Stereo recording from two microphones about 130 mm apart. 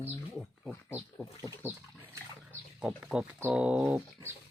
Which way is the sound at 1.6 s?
15° right (ahead or behind).